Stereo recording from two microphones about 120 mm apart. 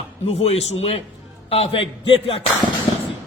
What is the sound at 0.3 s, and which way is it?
A man's voice, 55° left (ahead or behind).